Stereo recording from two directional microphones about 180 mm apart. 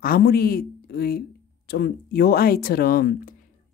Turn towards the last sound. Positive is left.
turn(degrees=55)  # may be behind; listen again after turning